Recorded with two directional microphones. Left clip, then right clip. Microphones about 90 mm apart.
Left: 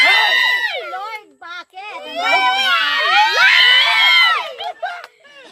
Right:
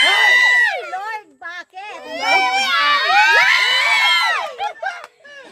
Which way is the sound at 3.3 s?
10° left (ahead or behind).